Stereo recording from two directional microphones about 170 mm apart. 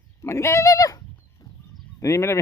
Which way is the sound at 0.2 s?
15° left (ahead or behind).